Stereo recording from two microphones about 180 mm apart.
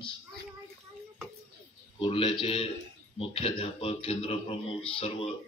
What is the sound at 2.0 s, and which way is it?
A man's voice, 30° left (ahead or behind).